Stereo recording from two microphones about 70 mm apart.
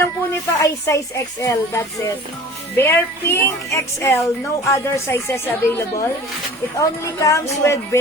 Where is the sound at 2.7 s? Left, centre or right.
Left.